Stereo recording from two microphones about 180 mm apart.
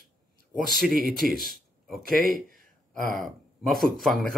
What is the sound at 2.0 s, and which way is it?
Speech, 50° right (ahead or behind).